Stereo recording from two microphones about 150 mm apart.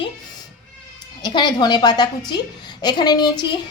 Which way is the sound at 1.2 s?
30° left (ahead or behind).